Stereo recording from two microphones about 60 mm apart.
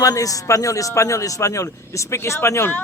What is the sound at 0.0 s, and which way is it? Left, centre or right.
A man's voice, left.